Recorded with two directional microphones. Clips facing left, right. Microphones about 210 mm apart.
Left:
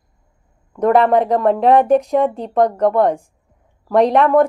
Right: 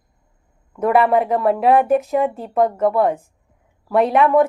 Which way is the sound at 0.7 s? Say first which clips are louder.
Left 2 dB; 5° right (ahead or behind).